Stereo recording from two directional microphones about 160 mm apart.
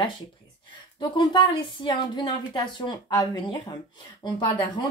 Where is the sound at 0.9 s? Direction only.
30° left (ahead or behind).